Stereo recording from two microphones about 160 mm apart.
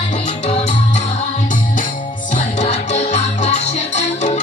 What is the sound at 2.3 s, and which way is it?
Music, 45° left (ahead or behind).